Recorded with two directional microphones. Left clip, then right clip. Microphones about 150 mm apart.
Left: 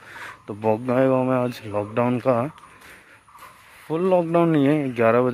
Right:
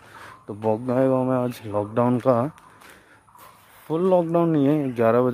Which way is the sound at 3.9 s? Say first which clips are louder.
Even; 15° right (ahead or behind).